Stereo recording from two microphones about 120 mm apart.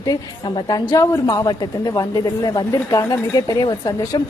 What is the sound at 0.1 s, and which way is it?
A woman's voice, 35° left (ahead or behind).